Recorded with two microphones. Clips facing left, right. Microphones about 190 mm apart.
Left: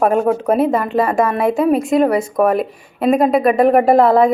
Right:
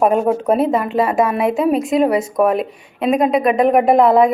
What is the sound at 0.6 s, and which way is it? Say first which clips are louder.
A woman's voice: left 1 dB; centre (ahead or behind).